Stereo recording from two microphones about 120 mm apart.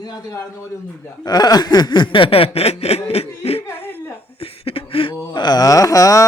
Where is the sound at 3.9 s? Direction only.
15° left (ahead or behind).